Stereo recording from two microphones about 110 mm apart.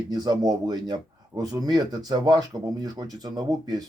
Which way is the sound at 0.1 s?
35° right (ahead or behind).